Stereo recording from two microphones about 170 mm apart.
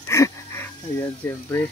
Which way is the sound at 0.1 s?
15° left (ahead or behind).